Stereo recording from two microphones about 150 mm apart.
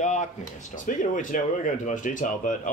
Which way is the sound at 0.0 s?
55° left (ahead or behind).